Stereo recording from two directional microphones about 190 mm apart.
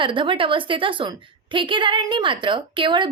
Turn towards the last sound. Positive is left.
turn(degrees=-25)  # may be behind; listen again after turning